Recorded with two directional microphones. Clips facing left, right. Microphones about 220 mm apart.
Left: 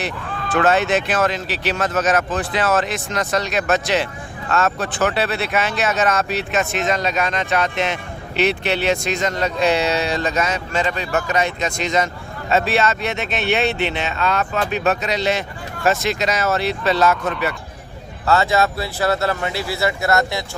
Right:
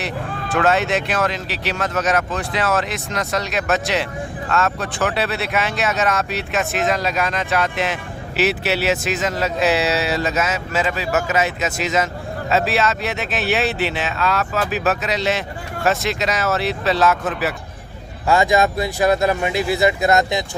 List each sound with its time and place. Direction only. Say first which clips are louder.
0.5 s speech: left 1 dB; centre (ahead or behind)
18.3 s speech: right 1 dB; 15° right (ahead or behind)